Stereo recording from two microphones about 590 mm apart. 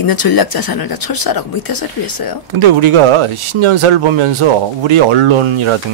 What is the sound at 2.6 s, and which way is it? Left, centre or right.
Speech, right.